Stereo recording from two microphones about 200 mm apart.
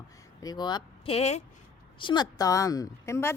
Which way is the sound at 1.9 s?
25° left (ahead or behind).